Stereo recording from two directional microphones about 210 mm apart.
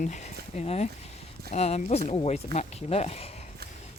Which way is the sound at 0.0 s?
35° left (ahead or behind).